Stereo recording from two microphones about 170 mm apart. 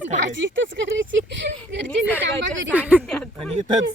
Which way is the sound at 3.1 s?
5° left (ahead or behind).